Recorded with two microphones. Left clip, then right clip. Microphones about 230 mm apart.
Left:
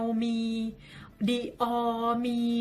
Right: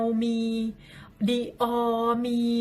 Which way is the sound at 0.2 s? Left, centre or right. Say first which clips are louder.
Right 3 dB; centre.